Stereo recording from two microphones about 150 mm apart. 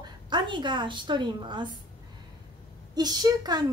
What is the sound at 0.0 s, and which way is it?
A woman's voice, 30° right (ahead or behind).